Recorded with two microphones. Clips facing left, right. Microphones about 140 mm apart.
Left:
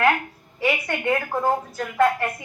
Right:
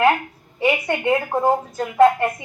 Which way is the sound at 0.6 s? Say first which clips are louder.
Right 4 dB; 20° right (ahead or behind).